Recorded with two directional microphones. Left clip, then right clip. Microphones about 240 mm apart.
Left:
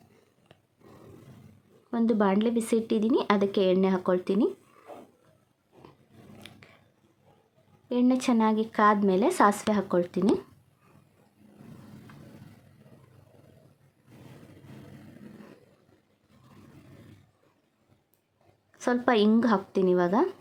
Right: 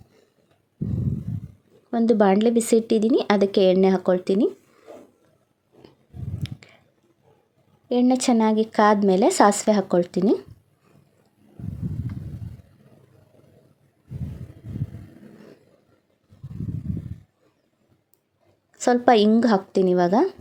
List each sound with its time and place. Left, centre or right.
1.9 s a woman's voice: centre
6.4 s a sound: centre
7.9 s speech: centre
18.7 s speech: centre